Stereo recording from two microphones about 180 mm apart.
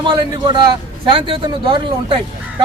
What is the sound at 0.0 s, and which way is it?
Speech, 25° right (ahead or behind).